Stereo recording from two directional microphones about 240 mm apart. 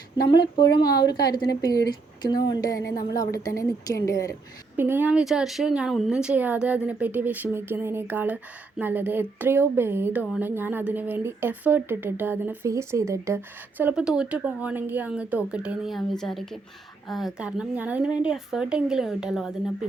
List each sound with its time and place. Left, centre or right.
0.3 s speech: centre
4.8 s a woman's voice: centre